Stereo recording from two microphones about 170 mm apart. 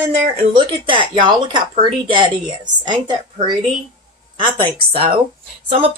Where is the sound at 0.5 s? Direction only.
30° right (ahead or behind).